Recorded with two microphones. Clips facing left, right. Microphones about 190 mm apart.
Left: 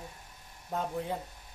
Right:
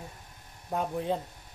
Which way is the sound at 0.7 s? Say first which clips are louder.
Right 4 dB; 20° right (ahead or behind).